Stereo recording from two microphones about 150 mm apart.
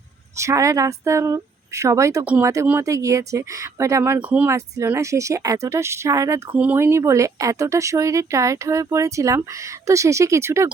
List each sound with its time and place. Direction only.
0.3 s speech: 20° right (ahead or behind)
2.2 s speech: 10° right (ahead or behind)